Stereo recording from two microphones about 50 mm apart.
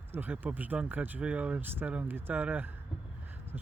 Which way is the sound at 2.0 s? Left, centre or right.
Right.